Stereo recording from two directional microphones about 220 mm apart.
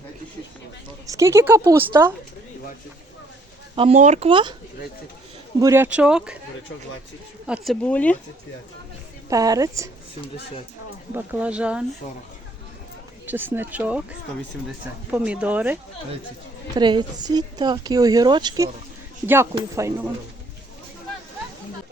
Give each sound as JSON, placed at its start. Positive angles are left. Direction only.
{"t": 1.0, "sound": "speech", "side_deg": -15}
{"t": 3.8, "sound": "speech", "side_deg": -30}
{"t": 5.5, "sound": "speech", "side_deg": -10}
{"t": 7.4, "sound": "speech", "side_deg": 0}
{"t": 9.3, "sound": "speech", "side_deg": -15}
{"t": 11.1, "sound": "speech", "side_deg": -5}
{"t": 13.2, "sound": "speech", "side_deg": -10}
{"t": 16.7, "sound": "speech", "side_deg": -20}